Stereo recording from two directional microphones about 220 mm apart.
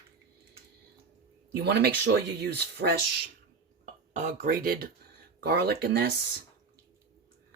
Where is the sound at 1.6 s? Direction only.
50° right (ahead or behind).